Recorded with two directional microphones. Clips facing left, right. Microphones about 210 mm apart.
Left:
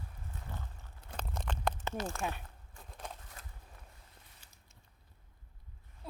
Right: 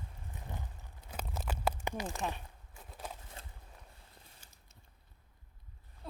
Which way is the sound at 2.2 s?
Centre (ahead or behind).